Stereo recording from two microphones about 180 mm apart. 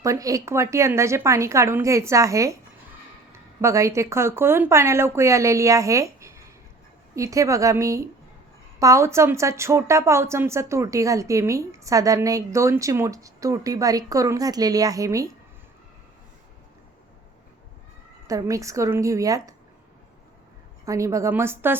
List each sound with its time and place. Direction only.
0.0 s a woman's voice: 20° right (ahead or behind)
18.3 s a woman's voice: 20° right (ahead or behind)
20.8 s a woman's voice: 15° right (ahead or behind)